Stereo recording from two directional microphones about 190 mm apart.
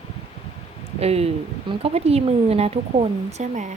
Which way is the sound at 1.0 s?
35° right (ahead or behind).